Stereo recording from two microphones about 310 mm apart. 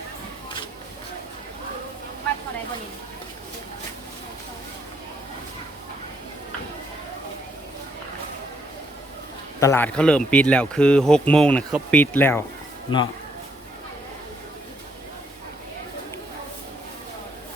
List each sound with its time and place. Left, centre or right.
9.6 s speech: centre